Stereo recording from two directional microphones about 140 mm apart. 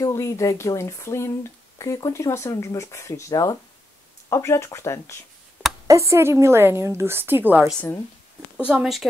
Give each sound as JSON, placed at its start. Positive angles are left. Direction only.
{"t": 0.0, "sound": "speech", "side_deg": 25}
{"t": 5.9, "sound": "a woman's voice", "side_deg": -20}